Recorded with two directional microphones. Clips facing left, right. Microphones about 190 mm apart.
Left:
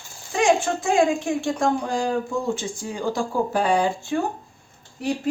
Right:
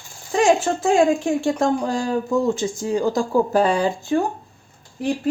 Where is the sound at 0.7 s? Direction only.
40° right (ahead or behind).